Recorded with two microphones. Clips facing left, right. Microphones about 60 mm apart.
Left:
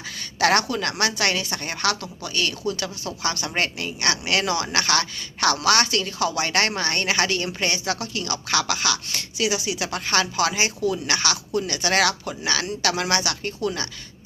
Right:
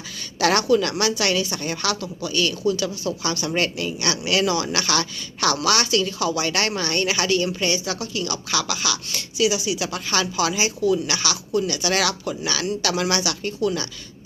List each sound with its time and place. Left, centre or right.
0.3 s speech: left
3.5 s speech: left